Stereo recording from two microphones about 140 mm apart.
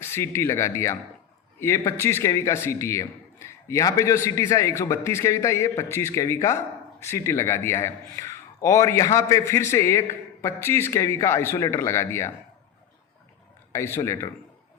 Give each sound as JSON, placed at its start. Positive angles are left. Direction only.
{"t": 0.0, "sound": "a man's voice", "side_deg": 20}
{"t": 13.7, "sound": "a man's voice", "side_deg": 20}